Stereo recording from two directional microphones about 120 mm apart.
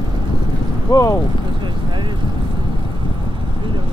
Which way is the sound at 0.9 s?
30° left (ahead or behind).